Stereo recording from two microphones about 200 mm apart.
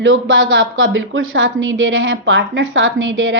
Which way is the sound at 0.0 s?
70° right (ahead or behind).